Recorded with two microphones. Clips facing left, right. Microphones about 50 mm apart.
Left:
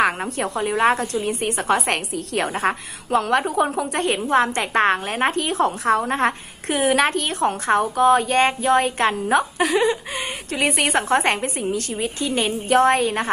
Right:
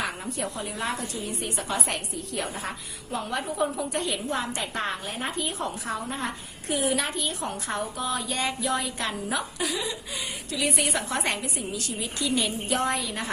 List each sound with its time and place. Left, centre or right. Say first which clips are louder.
0.0 s a woman's voice: left 10 dB; left